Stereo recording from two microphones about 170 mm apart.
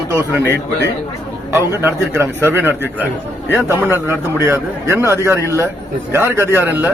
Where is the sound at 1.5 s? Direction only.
10° right (ahead or behind).